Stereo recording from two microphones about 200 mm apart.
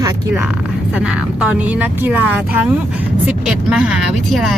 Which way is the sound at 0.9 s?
5° right (ahead or behind).